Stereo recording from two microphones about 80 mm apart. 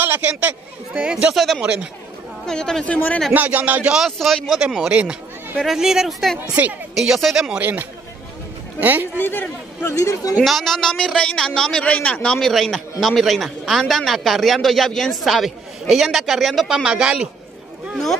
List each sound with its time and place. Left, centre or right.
0.0 s speech: right; by 1.6 s centre
1.6 s speech: centre
2.4 s a man's voice: centre
3.3 s speech: right
3.9 s a man's voice: centre
6.5 s speech: centre
7.0 s a man's voice: centre
7.6 s a man's voice: right
9.1 s speech: left
9.8 s speech: left
10.4 s a man's voice: centre